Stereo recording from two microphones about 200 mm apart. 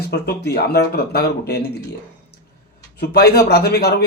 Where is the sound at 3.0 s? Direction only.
55° left (ahead or behind).